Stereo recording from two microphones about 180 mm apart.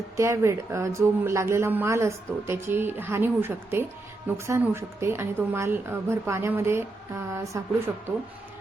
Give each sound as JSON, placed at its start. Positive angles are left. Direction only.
{"t": 0.2, "sound": "speech", "side_deg": -15}